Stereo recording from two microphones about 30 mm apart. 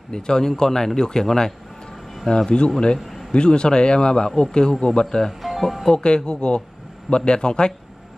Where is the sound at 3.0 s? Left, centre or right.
Centre.